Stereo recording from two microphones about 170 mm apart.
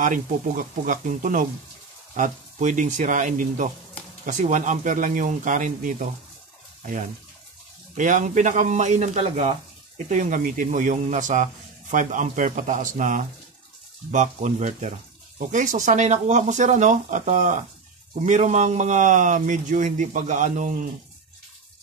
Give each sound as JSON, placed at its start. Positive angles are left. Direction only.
{"t": 0.0, "sound": "speech", "side_deg": -50}